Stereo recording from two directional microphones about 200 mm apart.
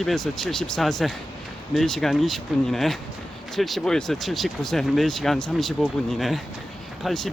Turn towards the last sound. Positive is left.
turn(degrees=0)  # may be behind; listen again after turning